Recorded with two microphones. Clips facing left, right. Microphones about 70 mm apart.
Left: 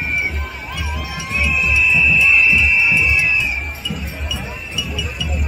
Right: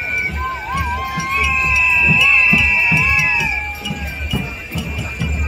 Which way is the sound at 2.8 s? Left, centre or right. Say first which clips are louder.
Right 1 dB; right.